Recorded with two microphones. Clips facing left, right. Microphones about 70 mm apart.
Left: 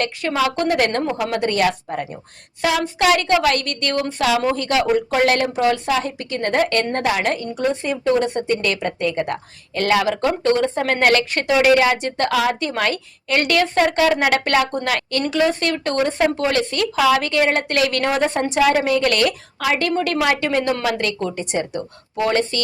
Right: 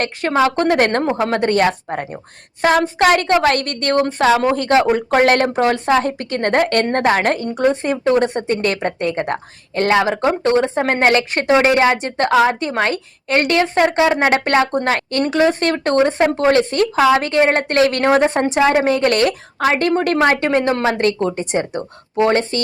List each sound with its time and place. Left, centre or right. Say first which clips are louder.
0.0 s speech: right 4 dB; right